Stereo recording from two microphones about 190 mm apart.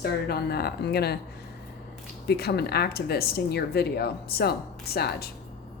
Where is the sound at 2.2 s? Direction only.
55° left (ahead or behind).